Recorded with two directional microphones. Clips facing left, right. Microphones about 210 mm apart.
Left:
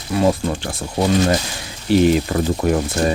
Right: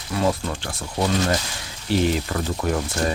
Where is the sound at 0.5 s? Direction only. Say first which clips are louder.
Left 5 dB; 10° left (ahead or behind).